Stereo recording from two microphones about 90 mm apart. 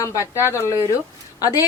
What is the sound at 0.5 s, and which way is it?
A woman's voice, 30° left (ahead or behind).